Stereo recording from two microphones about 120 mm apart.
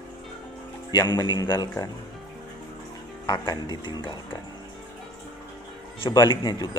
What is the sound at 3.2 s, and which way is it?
Speech, 40° left (ahead or behind).